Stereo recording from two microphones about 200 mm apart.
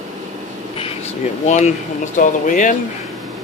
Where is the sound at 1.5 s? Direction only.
35° left (ahead or behind).